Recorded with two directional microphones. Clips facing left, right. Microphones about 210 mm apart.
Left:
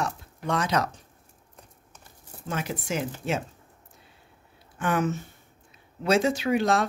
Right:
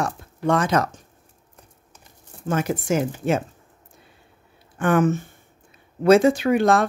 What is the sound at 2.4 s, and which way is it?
Speech, 50° right (ahead or behind).